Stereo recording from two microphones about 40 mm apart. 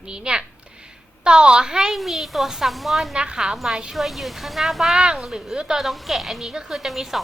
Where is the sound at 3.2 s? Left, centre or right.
Right.